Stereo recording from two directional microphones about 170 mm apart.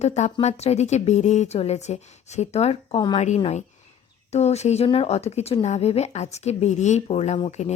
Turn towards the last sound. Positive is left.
turn(degrees=40)  # may be behind; listen again after turning